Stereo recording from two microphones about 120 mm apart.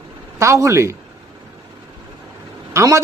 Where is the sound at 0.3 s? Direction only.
25° right (ahead or behind).